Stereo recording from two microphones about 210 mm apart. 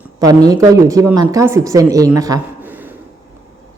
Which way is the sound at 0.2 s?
15° right (ahead or behind).